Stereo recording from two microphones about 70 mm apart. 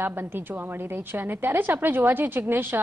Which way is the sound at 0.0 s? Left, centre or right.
Right.